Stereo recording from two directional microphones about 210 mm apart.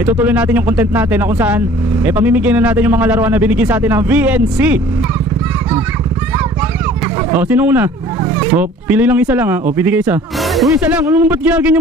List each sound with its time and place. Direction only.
0.0 s speech: 5° right (ahead or behind)
7.2 s speech: 10° right (ahead or behind)